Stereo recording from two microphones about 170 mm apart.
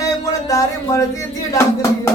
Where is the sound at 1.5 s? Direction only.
15° left (ahead or behind).